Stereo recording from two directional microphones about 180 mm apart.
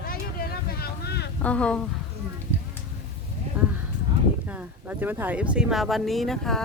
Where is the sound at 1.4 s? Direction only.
5° left (ahead or behind).